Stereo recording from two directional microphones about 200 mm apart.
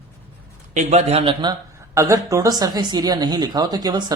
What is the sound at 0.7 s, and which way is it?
Speech, 35° right (ahead or behind).